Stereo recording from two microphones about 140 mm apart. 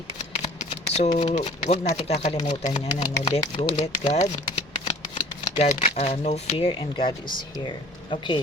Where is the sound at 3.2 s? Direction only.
40° left (ahead or behind).